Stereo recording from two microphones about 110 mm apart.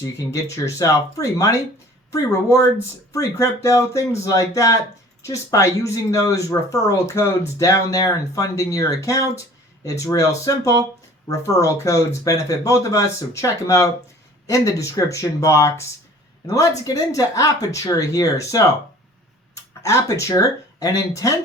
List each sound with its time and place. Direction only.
0.0 s speech: 30° left (ahead or behind)
19.8 s speech: 25° left (ahead or behind)